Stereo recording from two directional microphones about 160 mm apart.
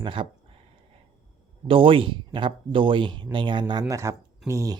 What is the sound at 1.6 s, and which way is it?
Speech, 35° right (ahead or behind).